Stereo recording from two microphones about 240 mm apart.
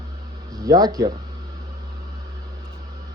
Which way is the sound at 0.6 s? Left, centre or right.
Centre.